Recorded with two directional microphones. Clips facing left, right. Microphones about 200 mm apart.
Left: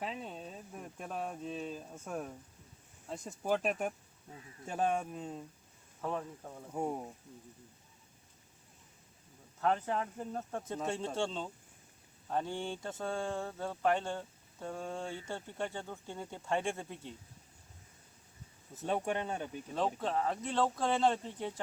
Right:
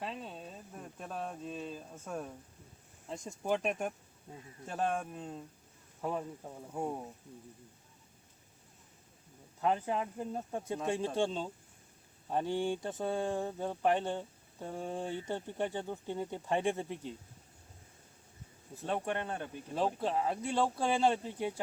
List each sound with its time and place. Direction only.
0.0 s speech: 10° left (ahead or behind)
4.9 s speech: centre (ahead or behind)
6.0 s speech: 10° right (ahead or behind)
6.7 s speech: 10° left (ahead or behind)
9.6 s speech: 10° right (ahead or behind)
18.9 s speech: 10° left (ahead or behind)
19.7 s speech: 10° right (ahead or behind)